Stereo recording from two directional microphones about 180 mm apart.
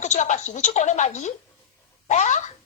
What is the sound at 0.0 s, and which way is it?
A woman's voice, 40° left (ahead or behind).